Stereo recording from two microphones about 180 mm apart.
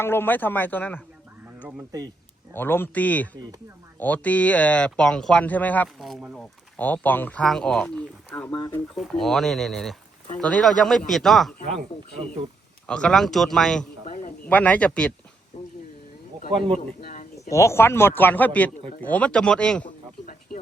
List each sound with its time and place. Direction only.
0.0 s speech: 10° left (ahead or behind)
1.5 s speech: 5° right (ahead or behind)
2.6 s speech: 10° left (ahead or behind)
9.0 s speech: centre (ahead or behind)
12.9 s speech: 5° left (ahead or behind)
14.1 s a sound: 45° left (ahead or behind)
14.4 s speech: 10° left (ahead or behind)
15.5 s a sound: 40° left (ahead or behind)
16.5 s a man's voice: 30° right (ahead or behind)
17.0 s a sound: 45° left (ahead or behind)
17.5 s speech: 15° left (ahead or behind)